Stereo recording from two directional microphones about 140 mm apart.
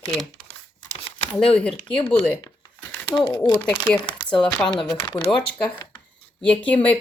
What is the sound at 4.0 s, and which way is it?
Speech, 35° left (ahead or behind).